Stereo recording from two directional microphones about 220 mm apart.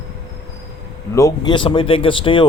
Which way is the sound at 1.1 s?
15° left (ahead or behind).